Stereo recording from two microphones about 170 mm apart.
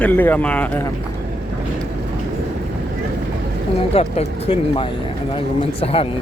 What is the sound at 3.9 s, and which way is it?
Speech, 35° left (ahead or behind).